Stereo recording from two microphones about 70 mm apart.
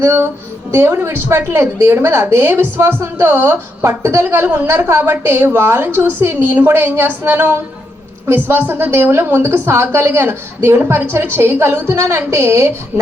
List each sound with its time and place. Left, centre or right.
0.0 s a woman's voice: right